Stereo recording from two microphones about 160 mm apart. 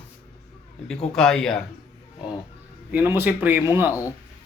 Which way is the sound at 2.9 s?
10° right (ahead or behind).